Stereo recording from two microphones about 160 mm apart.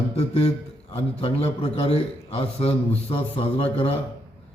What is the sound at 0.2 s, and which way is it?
A man's voice, 40° left (ahead or behind).